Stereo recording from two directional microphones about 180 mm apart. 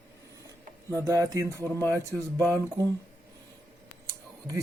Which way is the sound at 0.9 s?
20° right (ahead or behind).